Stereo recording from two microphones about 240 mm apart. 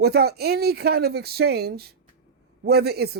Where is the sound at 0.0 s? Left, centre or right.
Right.